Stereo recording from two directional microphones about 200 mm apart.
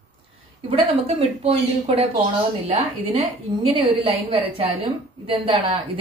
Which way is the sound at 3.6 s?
30° right (ahead or behind).